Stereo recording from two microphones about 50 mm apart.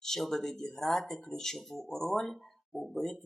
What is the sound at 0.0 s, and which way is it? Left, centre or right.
Speech, centre.